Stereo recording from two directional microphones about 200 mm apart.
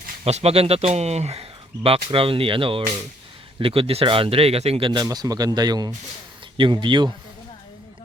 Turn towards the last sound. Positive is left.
turn(degrees=-25)  # may be behind; listen again after turning